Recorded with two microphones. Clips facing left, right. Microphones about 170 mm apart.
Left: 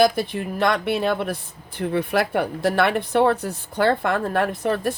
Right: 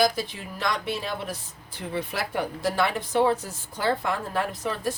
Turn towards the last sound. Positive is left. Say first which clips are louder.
# left 6 dB
turn(degrees=60)  # may be behind; listen again after turning